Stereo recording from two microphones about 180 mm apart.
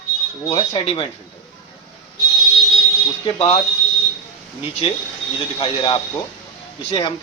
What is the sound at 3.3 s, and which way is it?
Speech, 30° left (ahead or behind).